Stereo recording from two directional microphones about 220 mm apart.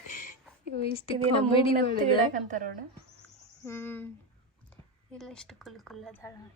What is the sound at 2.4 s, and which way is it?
Speech, 35° right (ahead or behind).